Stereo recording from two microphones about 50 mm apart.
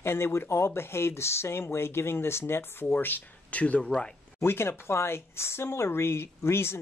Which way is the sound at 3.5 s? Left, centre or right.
Left.